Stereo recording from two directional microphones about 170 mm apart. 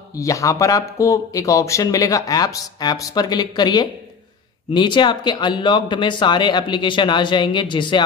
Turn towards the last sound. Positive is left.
turn(degrees=30)  # may be behind; listen again after turning